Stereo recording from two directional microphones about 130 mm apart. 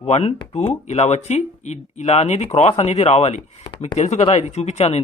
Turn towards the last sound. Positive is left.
turn(degrees=55)  # may be behind; listen again after turning